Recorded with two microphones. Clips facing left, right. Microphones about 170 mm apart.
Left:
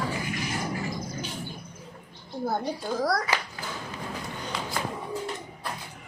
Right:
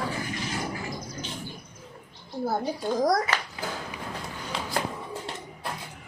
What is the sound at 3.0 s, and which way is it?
Speech, 20° right (ahead or behind).